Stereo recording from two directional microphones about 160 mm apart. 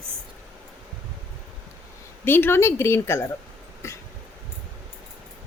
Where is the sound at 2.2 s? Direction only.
15° left (ahead or behind).